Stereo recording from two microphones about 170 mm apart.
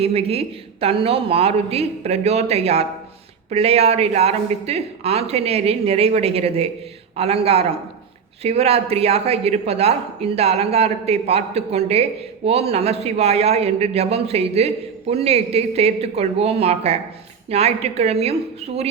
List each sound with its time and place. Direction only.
0.0 s a man's voice: 35° right (ahead or behind)